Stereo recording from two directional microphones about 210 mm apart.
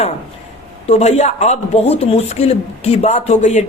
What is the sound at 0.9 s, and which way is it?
A man's voice, 30° left (ahead or behind).